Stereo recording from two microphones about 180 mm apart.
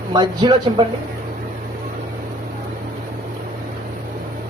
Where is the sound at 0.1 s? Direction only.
25° right (ahead or behind).